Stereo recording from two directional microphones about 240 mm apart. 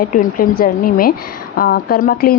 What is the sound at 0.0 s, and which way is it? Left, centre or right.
A woman's voice, left.